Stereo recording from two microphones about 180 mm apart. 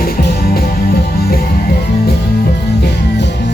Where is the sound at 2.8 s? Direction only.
75° left (ahead or behind).